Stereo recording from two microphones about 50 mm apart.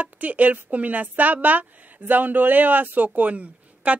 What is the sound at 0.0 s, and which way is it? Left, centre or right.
Speech, right.